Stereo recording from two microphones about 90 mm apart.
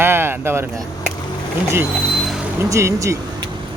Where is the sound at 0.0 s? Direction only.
25° right (ahead or behind).